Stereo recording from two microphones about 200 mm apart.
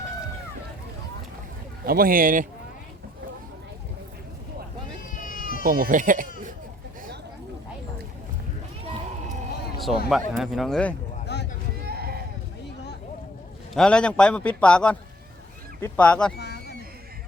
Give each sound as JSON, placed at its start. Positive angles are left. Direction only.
{"t": 1.8, "sound": "speech", "side_deg": -45}
{"t": 5.2, "sound": "baby cry", "side_deg": 40}
{"t": 5.6, "sound": "speech", "side_deg": -45}
{"t": 10.1, "sound": "a man's voice", "side_deg": 0}
{"t": 11.3, "sound": "run", "side_deg": 60}
{"t": 11.9, "sound": "sheep", "side_deg": -50}
{"t": 13.7, "sound": "a man's voice", "side_deg": 5}
{"t": 16.4, "sound": "a sound", "side_deg": 55}